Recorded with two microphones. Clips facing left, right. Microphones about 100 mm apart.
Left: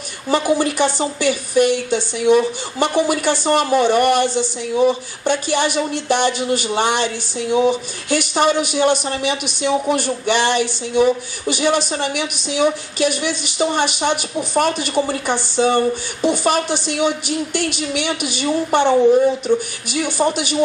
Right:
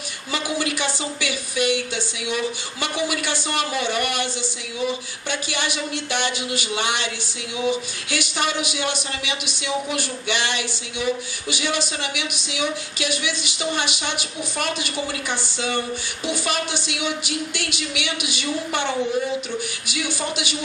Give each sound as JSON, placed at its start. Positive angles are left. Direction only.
{"t": 0.3, "sound": "speech", "side_deg": 40}